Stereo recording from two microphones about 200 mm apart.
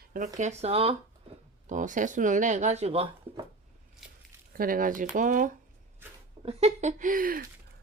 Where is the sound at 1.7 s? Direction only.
40° right (ahead or behind).